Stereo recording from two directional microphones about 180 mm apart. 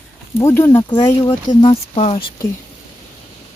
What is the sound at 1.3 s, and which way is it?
Speech, 30° left (ahead or behind).